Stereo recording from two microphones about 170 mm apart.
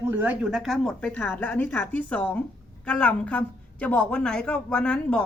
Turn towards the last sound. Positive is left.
turn(degrees=5)  # may be behind; listen again after turning